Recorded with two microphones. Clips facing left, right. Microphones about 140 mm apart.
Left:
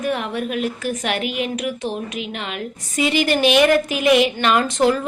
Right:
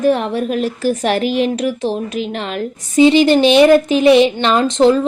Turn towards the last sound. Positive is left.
turn(degrees=-25)  # may be behind; listen again after turning